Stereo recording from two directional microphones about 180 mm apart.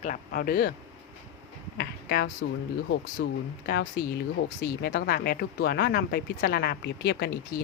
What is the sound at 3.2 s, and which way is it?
Speech, 70° left (ahead or behind).